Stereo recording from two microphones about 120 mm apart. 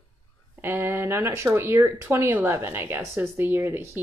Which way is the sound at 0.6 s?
20° right (ahead or behind).